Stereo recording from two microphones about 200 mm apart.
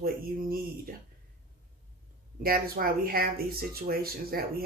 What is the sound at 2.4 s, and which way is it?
Speech, 50° right (ahead or behind).